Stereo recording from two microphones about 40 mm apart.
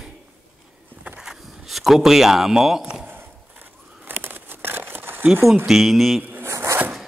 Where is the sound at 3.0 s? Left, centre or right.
Right.